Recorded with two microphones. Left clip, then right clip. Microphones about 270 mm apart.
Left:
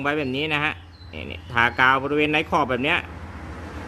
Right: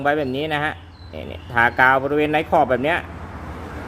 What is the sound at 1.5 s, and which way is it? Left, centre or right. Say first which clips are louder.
Speech: right 3 dB; left.